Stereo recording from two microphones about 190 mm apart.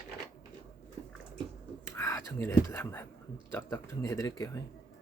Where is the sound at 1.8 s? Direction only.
15° left (ahead or behind).